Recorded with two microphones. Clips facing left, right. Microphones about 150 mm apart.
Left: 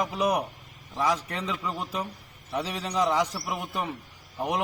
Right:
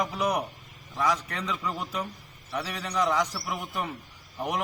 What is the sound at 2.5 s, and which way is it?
Speech, 25° left (ahead or behind).